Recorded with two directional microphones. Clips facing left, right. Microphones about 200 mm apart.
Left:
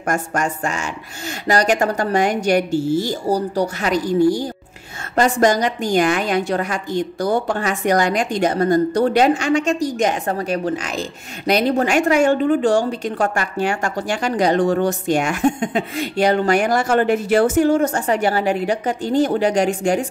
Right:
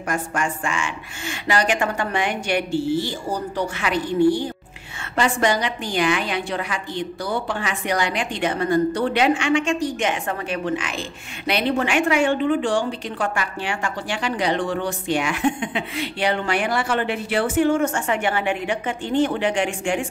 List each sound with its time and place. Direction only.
0.0 s a woman's voice: 45° left (ahead or behind)